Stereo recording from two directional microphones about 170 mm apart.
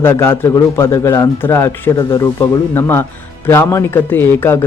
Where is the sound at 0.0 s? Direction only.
15° left (ahead or behind).